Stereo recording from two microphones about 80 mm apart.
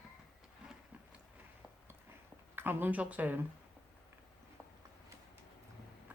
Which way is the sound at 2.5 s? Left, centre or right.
Right.